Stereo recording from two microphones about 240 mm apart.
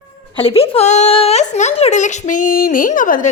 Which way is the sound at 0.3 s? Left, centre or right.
Left.